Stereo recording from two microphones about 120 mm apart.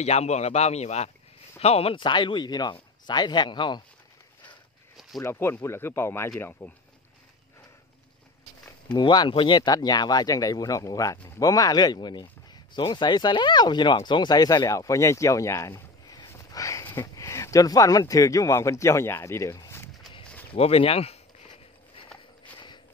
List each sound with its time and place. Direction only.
0.0 s a man's voice: 65° left (ahead or behind); by 3.8 s 40° left (ahead or behind)
5.2 s speech: 20° left (ahead or behind)
8.9 s speech: 40° left (ahead or behind)
20.5 s a man's voice: 55° left (ahead or behind)